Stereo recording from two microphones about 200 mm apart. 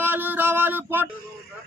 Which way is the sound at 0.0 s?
10° right (ahead or behind).